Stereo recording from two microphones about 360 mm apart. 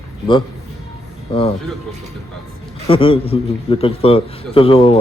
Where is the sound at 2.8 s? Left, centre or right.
Centre.